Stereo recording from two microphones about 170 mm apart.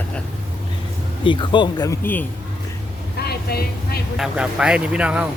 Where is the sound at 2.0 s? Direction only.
10° left (ahead or behind).